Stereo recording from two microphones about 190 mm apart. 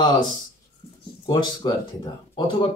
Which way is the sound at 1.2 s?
20° left (ahead or behind).